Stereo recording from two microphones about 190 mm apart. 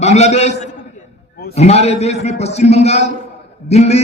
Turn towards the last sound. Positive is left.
turn(degrees=35)  # may be behind; listen again after turning